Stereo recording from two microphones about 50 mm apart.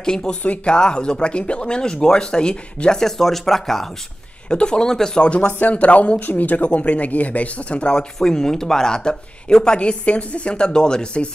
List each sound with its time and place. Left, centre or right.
0.0 s speech: centre
0.4 s speech: left; by 3.9 s centre
4.5 s speech: centre
5.5 s speech: left
7.9 s speech: centre